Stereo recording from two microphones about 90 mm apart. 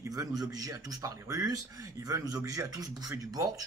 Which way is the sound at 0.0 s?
40° right (ahead or behind).